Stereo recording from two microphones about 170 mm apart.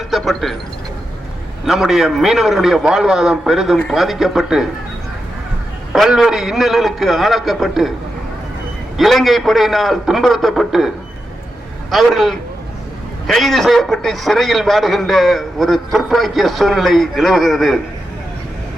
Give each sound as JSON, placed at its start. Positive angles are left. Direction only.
{"t": 0.1, "sound": "speech", "side_deg": 0}
{"t": 1.6, "sound": "a man's voice", "side_deg": 0}
{"t": 5.9, "sound": "a man's voice", "side_deg": 0}
{"t": 9.0, "sound": "a man's voice", "side_deg": 0}